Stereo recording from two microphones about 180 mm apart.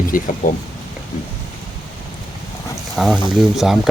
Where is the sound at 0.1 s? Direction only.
50° left (ahead or behind).